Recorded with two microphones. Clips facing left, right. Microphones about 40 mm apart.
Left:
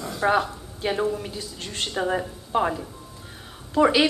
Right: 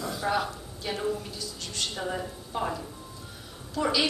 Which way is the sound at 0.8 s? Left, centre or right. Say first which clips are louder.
Left 6 dB; left.